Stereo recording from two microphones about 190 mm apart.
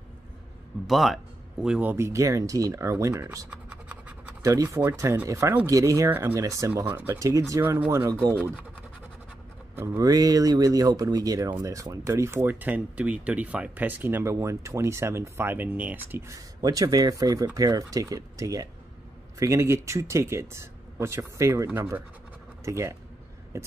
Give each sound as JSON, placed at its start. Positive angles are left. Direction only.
{"t": 0.8, "sound": "speech", "side_deg": 0}
{"t": 4.4, "sound": "speech", "side_deg": -15}
{"t": 9.8, "sound": "speech", "side_deg": -15}